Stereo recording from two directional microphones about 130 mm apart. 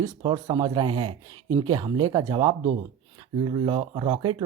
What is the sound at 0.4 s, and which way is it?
Speech, 35° right (ahead or behind).